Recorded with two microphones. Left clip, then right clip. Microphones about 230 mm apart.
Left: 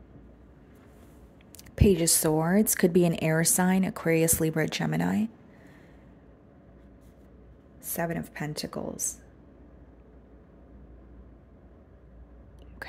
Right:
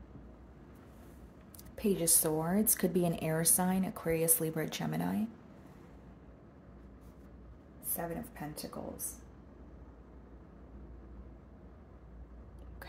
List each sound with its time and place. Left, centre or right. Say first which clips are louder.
1.8 s speech: left 9 dB; left
7.9 s speech: left 8 dB; left